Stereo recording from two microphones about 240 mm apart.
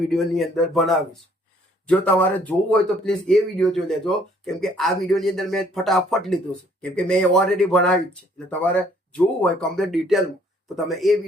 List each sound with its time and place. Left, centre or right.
0.1 s speech: centre